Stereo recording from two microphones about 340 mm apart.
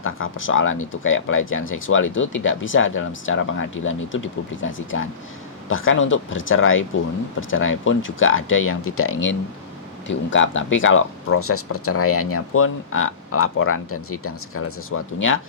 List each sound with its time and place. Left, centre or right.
0.0 s speech: left